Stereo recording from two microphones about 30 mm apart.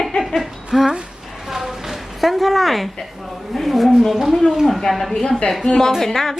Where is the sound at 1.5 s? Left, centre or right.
Centre.